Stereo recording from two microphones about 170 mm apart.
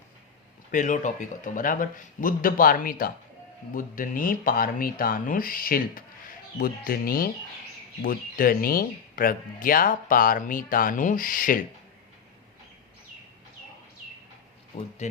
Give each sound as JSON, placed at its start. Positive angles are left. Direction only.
{"t": 0.7, "sound": "speech", "side_deg": 45}
{"t": 14.8, "sound": "speech", "side_deg": 40}